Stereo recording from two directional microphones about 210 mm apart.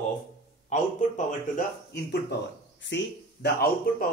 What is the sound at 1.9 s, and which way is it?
Speech, 50° left (ahead or behind).